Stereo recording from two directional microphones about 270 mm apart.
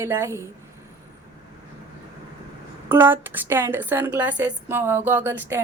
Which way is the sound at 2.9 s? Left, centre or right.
Centre.